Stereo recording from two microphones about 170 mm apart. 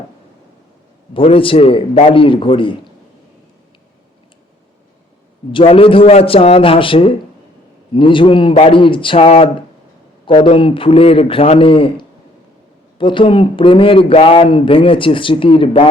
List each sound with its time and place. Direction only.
1.1 s speech: 30° left (ahead or behind)
5.5 s speech: 30° left (ahead or behind)